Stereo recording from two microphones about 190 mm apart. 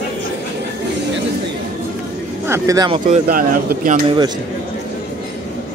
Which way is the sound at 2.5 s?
20° right (ahead or behind).